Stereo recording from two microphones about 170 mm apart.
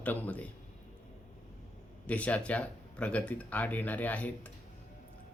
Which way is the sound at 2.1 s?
10° left (ahead or behind).